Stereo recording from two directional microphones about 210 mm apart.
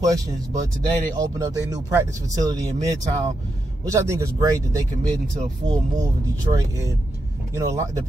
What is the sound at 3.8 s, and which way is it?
Speech, 15° right (ahead or behind).